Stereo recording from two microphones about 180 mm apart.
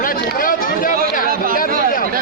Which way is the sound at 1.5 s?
50° left (ahead or behind).